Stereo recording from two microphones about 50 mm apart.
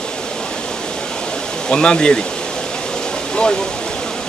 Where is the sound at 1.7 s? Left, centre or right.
Centre.